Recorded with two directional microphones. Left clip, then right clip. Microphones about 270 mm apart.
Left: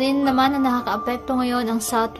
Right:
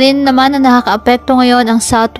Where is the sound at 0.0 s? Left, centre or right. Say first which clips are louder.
Right 10 dB; right.